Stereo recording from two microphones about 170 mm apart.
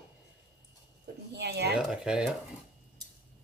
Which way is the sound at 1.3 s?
80° right.